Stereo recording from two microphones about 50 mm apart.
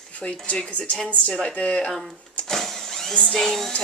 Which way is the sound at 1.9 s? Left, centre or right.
Centre.